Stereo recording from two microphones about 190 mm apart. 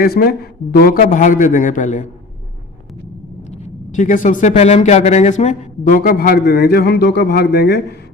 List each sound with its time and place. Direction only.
0.0 s a man's voice: 55° left (ahead or behind)
3.5 s speech: 40° left (ahead or behind); by 7.8 s 60° left (ahead or behind)